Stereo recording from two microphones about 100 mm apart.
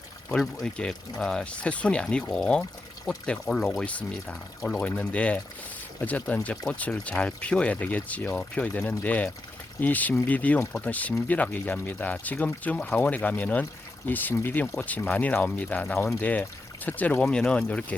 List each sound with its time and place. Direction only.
0.6 s speech: 5° left (ahead or behind)